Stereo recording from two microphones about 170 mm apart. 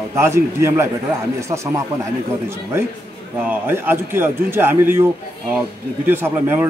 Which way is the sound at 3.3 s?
10° right (ahead or behind).